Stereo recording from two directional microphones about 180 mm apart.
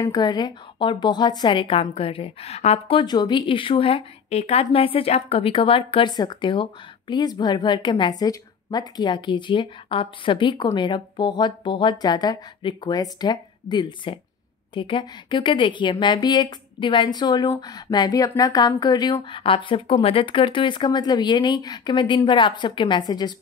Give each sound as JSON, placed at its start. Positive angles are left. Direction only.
{"t": 0.0, "sound": "a woman's voice", "side_deg": 20}